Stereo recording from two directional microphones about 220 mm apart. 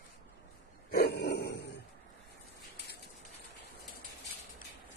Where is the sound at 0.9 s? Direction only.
45° left (ahead or behind).